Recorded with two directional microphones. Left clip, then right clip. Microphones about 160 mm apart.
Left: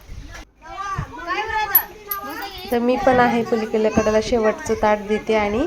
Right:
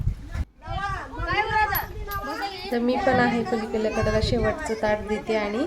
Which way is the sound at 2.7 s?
10° left (ahead or behind).